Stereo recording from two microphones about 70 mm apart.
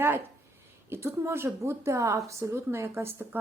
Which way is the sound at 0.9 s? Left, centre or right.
Right.